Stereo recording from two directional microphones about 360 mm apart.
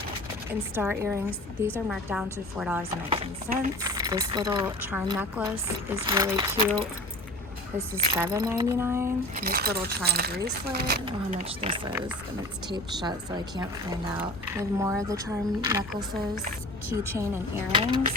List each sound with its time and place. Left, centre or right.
0.8 s a woman's voice: centre
3.1 s speech: centre
8.2 s speech: centre
9.3 s speech: right
11.0 s a woman's voice: centre